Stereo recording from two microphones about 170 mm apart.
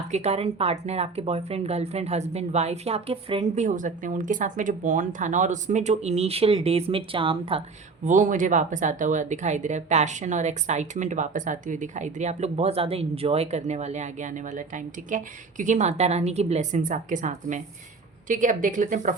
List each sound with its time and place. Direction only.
0.1 s speech: 40° right (ahead or behind)
8.0 s speech: 50° right (ahead or behind)